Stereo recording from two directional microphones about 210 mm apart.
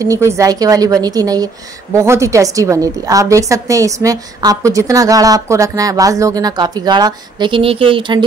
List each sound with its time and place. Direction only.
0.0 s a woman's voice: 15° right (ahead or behind)